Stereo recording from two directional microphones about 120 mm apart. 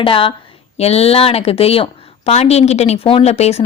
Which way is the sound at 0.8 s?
60° left (ahead or behind).